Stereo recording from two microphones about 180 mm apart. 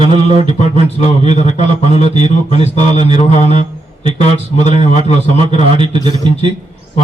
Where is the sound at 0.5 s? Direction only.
40° left (ahead or behind).